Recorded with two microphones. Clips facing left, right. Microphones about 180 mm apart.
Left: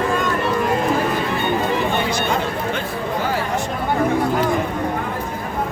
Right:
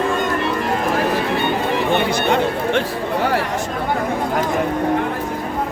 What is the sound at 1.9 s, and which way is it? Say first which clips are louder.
Chatter: right 3 dB; 65° right (ahead or behind).